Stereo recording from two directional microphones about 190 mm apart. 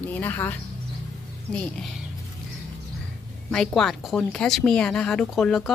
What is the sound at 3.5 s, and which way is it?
A woman's voice, 5° left (ahead or behind).